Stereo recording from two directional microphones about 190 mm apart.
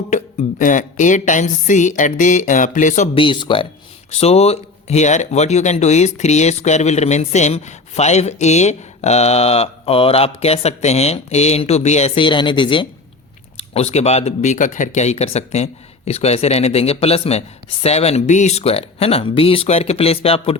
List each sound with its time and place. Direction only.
0.1 s speech: 40° left (ahead or behind)
3.2 s speech: 25° left (ahead or behind)